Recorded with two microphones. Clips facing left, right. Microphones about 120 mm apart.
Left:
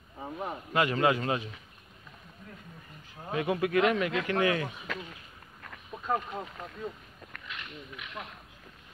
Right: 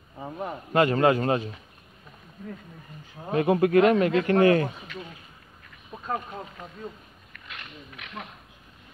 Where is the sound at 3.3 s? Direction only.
40° right (ahead or behind).